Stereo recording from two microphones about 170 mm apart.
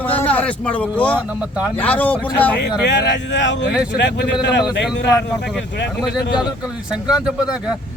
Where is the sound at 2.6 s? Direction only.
85° left.